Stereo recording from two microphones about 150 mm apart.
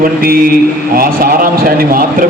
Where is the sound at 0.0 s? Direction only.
75° right (ahead or behind).